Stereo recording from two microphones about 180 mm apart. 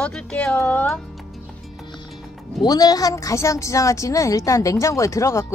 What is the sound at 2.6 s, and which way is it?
A woman's voice, 20° left (ahead or behind).